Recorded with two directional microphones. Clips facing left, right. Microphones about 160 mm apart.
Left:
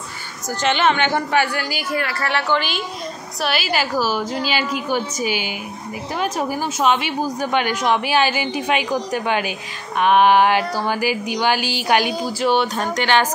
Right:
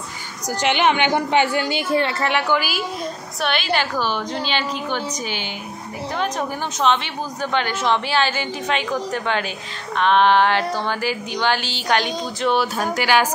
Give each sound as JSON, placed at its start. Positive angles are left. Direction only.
{"t": 0.6, "sound": "speech", "side_deg": -15}
{"t": 3.4, "sound": "a woman's voice", "side_deg": 5}
{"t": 12.7, "sound": "speech", "side_deg": -5}